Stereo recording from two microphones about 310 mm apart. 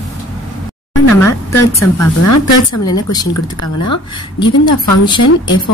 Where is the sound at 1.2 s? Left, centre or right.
Centre.